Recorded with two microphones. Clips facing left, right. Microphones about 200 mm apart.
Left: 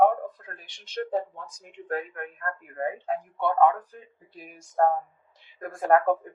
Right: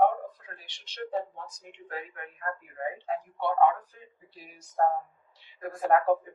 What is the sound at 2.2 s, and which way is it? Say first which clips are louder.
Speech: left 2 dB; 55° left (ahead or behind).